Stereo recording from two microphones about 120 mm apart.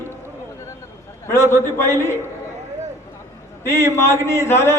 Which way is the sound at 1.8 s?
20° left (ahead or behind).